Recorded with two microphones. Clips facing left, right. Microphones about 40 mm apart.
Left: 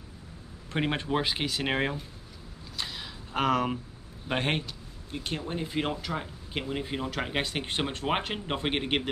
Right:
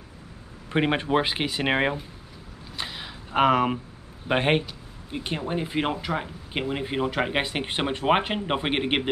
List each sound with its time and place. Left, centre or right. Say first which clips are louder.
0.7 s speech: right 6 dB; right
2.8 s a sound: right 2 dB; centre
4.3 s speech: right 7 dB; centre